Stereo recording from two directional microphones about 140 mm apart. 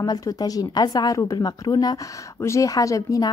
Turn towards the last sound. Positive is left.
turn(degrees=25)  # may be behind; listen again after turning